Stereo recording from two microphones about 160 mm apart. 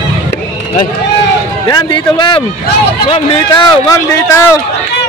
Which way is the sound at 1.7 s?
25° left (ahead or behind).